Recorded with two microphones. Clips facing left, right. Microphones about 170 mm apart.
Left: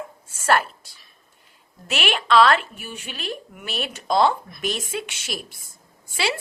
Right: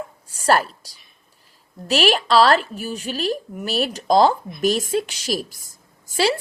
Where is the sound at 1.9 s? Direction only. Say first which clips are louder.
Right 4 dB; 40° right (ahead or behind).